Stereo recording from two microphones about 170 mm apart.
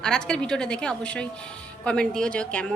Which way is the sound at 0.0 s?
5° left (ahead or behind).